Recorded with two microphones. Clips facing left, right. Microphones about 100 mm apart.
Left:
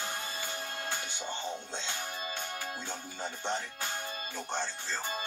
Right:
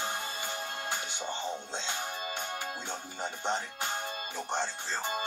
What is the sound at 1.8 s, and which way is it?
Speech, 20° right (ahead or behind).